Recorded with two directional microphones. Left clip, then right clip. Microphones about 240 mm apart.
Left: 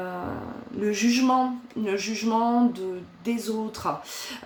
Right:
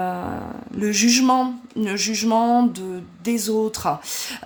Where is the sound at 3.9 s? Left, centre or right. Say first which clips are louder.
Right 3 dB; right.